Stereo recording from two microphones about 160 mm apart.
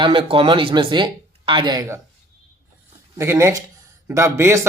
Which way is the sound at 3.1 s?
15° right (ahead or behind).